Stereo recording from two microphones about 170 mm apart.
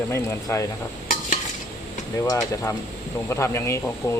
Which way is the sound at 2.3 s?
15° left (ahead or behind).